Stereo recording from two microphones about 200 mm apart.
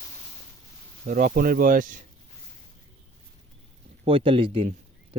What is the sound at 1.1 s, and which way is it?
Speech, 40° right (ahead or behind).